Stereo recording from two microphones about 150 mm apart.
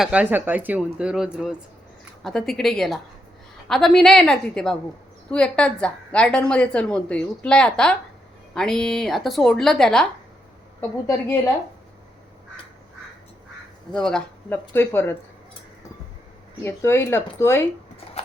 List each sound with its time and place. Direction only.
0.0 s a woman's voice: 10° right (ahead or behind)
10.8 s a woman's voice: 15° left (ahead or behind)
13.9 s a woman's voice: 5° left (ahead or behind)
16.6 s a woman's voice: 15° left (ahead or behind)